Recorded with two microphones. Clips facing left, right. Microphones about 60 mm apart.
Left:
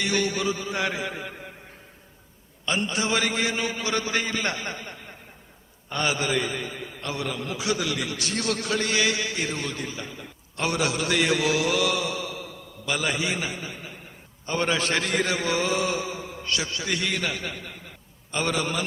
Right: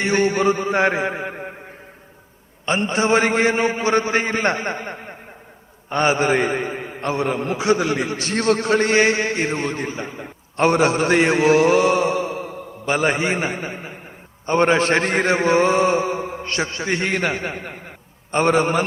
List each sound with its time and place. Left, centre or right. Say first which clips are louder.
0.0 s a man's voice: right 8 dB; right
2.6 s a man's voice: right 7 dB; right